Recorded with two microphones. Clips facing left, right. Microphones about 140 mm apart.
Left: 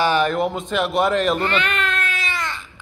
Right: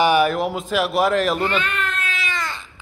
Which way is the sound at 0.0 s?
10° right (ahead or behind).